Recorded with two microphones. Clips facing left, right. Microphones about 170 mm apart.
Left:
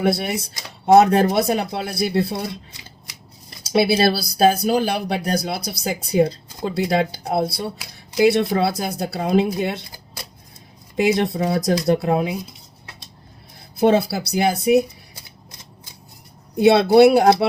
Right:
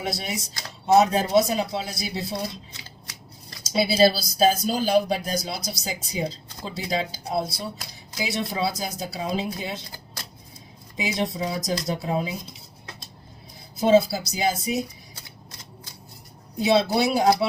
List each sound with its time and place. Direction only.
0.0 s speech: 60° left (ahead or behind)
3.6 s speech: 65° left (ahead or behind)
10.9 s speech: 60° left (ahead or behind)
13.7 s speech: 65° left (ahead or behind)
16.6 s speech: 60° left (ahead or behind)